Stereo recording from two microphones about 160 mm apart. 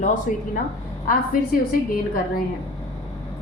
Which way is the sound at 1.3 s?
60° left (ahead or behind).